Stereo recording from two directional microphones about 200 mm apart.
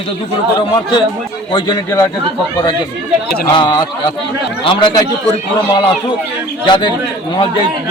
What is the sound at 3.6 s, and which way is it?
A man's voice, 20° left (ahead or behind).